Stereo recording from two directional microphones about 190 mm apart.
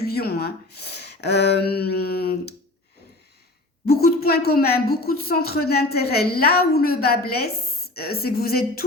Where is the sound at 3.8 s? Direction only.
55° left (ahead or behind).